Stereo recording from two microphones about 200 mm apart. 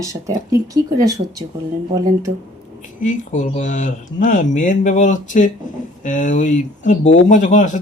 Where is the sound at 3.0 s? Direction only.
40° left (ahead or behind).